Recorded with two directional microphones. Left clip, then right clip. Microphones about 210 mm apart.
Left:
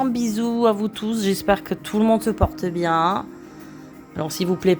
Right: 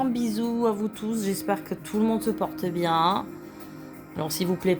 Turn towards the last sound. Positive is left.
turn(degrees=25)  # may be behind; listen again after turning